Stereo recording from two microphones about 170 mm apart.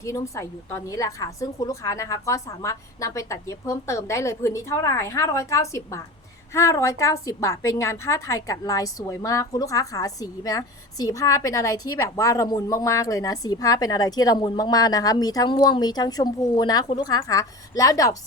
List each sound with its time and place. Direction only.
0.0 s a woman's voice: 15° left (ahead or behind)